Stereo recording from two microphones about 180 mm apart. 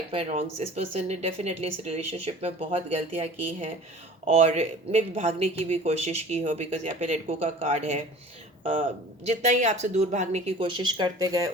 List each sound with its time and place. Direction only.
0.1 s speech: 35° right (ahead or behind)
8.6 s speech: 45° right (ahead or behind); by 11.3 s 20° right (ahead or behind)